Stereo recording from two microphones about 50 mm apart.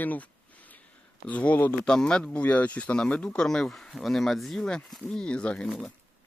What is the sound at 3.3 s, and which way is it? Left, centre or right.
Speech, centre.